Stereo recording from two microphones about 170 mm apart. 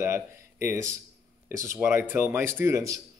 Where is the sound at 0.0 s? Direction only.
15° right (ahead or behind).